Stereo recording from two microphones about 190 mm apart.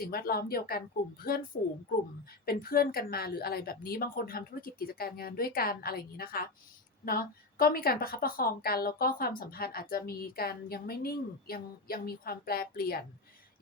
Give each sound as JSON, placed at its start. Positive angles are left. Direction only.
{"t": 0.0, "sound": "a woman's voice", "side_deg": 50}
{"t": 2.5, "sound": "a woman's voice", "side_deg": 50}